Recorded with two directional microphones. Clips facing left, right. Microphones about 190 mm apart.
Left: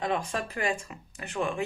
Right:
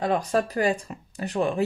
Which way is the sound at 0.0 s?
40° right (ahead or behind).